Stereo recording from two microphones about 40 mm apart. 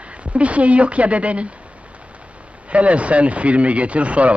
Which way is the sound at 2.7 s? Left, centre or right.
Right.